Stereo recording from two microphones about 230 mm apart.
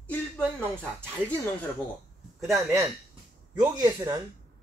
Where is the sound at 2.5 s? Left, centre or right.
Centre.